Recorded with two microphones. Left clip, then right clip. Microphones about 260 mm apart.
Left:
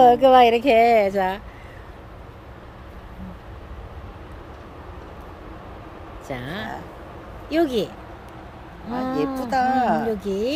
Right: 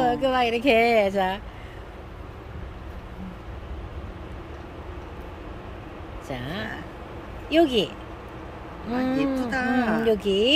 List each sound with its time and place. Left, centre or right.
0.0 s speech: centre
6.2 s speech: centre
8.9 s speech: centre
9.5 s speech: left
10.0 s speech: centre